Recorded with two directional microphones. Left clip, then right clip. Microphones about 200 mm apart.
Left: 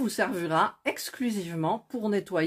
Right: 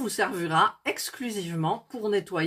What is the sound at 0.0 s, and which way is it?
Speech, 30° left (ahead or behind).